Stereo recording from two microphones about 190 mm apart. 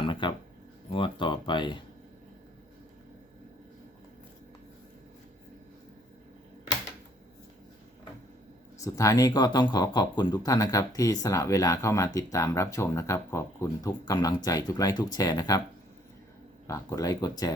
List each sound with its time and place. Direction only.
0.0 s a sound: 25° left (ahead or behind)
0.9 s speech: 25° left (ahead or behind)
8.8 s speech: 15° left (ahead or behind)
16.6 s speech: 15° left (ahead or behind)